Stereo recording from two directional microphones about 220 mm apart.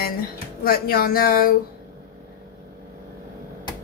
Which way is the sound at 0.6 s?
40° left (ahead or behind).